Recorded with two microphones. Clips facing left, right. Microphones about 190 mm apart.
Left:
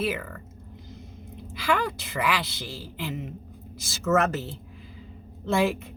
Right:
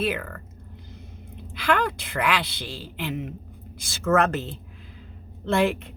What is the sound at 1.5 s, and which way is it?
A woman's voice, 60° right (ahead or behind).